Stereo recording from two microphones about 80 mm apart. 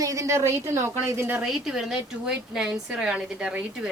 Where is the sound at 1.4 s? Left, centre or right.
Centre.